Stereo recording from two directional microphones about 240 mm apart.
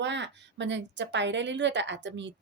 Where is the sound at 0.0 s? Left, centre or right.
Right.